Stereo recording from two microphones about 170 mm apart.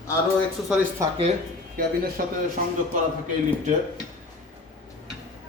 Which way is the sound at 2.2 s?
55° right (ahead or behind).